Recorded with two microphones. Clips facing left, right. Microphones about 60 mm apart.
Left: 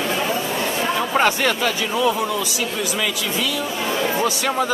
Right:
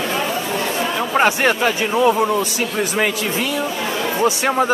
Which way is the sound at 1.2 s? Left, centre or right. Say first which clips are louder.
Right 4 dB; right.